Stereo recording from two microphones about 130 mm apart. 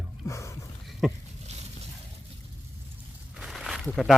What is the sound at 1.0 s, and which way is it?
Speech, 5° right (ahead or behind).